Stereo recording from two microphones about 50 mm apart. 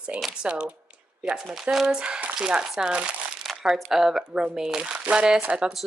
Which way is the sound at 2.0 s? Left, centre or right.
Right.